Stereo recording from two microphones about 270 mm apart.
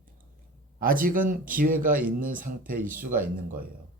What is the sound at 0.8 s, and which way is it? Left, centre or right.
Speech, right.